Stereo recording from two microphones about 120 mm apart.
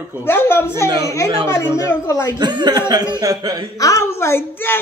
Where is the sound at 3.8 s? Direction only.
25° left (ahead or behind).